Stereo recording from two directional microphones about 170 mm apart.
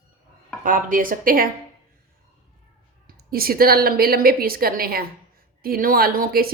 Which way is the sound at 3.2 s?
60° right (ahead or behind).